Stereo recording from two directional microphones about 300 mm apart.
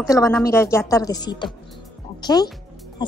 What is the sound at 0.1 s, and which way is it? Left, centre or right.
A woman's voice, centre.